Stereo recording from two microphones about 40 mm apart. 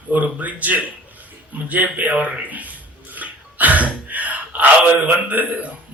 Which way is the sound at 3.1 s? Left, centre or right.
Right.